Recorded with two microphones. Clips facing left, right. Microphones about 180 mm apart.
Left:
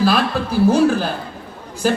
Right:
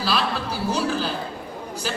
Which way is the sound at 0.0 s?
50° left (ahead or behind).